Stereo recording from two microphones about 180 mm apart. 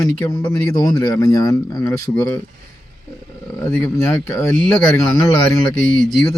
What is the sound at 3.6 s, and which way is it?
Speech, 15° left (ahead or behind).